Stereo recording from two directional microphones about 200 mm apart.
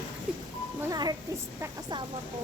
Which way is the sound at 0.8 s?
20° right (ahead or behind).